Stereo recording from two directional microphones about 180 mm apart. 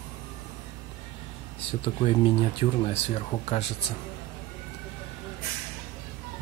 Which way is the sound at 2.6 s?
35° left (ahead or behind).